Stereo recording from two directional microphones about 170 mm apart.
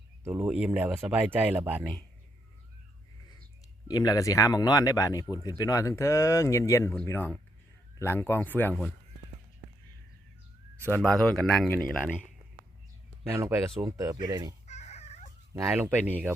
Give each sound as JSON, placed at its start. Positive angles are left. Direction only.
{"t": 0.3, "sound": "speech", "side_deg": -10}
{"t": 3.8, "sound": "speech", "side_deg": 25}
{"t": 10.8, "sound": "speech", "side_deg": 10}
{"t": 13.4, "sound": "speech", "side_deg": -20}
{"t": 14.7, "sound": "dog", "side_deg": 40}
{"t": 15.5, "sound": "speech", "side_deg": -15}